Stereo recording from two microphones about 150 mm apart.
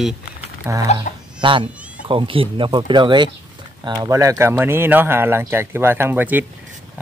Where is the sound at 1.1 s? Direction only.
50° left (ahead or behind).